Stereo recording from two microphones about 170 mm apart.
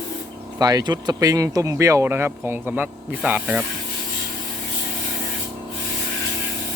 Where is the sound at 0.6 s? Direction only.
20° right (ahead or behind).